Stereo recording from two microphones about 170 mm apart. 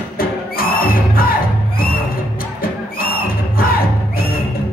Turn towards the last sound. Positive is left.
turn(degrees=60)  # may be behind; listen again after turning